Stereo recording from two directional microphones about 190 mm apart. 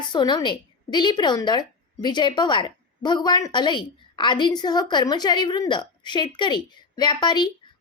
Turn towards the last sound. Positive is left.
turn(degrees=25)  # may be behind; listen again after turning